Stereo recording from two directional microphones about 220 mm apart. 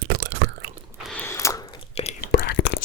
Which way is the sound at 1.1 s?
10° left (ahead or behind).